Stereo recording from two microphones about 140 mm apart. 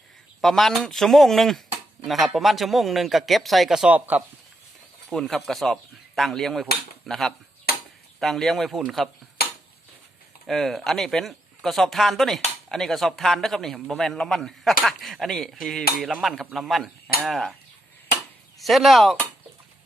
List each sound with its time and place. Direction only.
0.4 s a man's voice: centre (ahead or behind)
5.0 s cutlery: 5° left (ahead or behind)
7.7 s chop: 90° left
8.2 s a man's voice: centre (ahead or behind)
9.4 s a sound: 90° left
10.4 s a man's voice: centre (ahead or behind)
18.6 s a man's voice: centre (ahead or behind)